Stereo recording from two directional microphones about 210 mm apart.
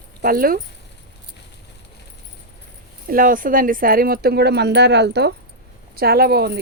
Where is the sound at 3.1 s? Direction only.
40° right (ahead or behind).